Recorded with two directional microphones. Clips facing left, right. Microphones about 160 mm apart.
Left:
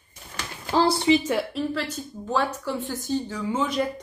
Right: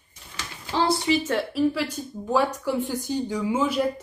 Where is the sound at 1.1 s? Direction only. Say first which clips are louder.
Left 5 dB; 25° left (ahead or behind).